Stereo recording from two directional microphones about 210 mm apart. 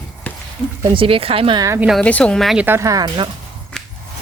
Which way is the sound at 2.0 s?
5° left (ahead or behind).